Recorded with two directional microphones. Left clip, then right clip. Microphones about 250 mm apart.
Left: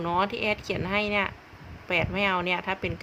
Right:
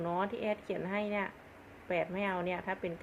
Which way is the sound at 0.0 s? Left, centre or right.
Left.